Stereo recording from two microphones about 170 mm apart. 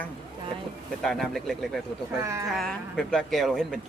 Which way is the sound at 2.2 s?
20° right (ahead or behind).